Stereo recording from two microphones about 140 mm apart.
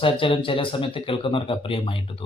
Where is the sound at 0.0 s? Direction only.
40° left (ahead or behind).